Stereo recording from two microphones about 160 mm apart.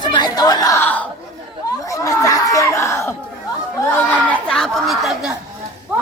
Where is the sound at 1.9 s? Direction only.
20° left (ahead or behind).